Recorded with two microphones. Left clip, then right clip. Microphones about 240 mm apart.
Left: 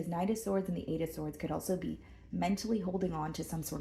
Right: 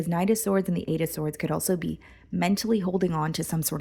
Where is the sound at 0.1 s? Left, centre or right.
Right.